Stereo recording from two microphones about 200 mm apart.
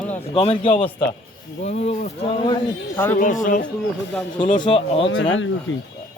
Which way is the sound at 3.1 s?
40° left (ahead or behind).